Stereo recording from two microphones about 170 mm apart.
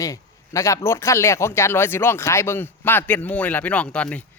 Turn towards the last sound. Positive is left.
turn(degrees=10)  # may be behind; listen again after turning